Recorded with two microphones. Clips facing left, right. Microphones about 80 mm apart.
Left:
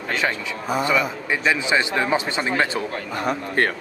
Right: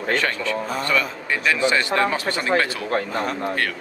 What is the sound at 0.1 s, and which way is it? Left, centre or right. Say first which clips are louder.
Speech: right 2 dB; centre.